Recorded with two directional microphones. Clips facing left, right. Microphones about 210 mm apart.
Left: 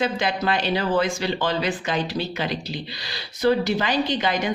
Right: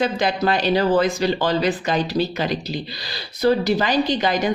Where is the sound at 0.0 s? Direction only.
40° right (ahead or behind).